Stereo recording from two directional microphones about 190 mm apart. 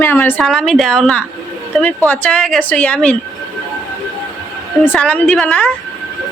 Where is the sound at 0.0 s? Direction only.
10° left (ahead or behind).